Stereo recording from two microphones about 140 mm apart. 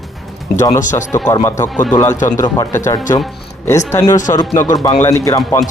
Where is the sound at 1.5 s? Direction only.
15° left (ahead or behind).